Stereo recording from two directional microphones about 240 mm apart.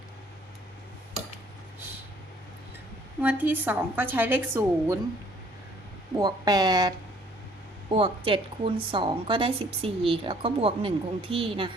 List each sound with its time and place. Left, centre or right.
3.2 s a woman's voice: centre
6.1 s a woman's voice: centre